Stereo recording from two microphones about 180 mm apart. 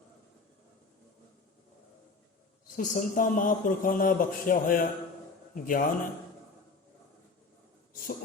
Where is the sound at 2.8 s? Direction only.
50° left (ahead or behind).